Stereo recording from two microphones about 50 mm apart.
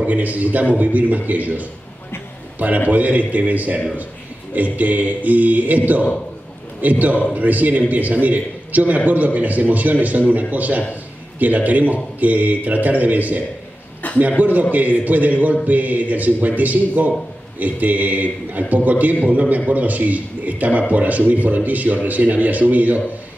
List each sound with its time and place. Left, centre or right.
0.0 s a man's voice: right
2.9 s a man's voice: right
14.0 s chuckle: left
14.4 s a man's voice: right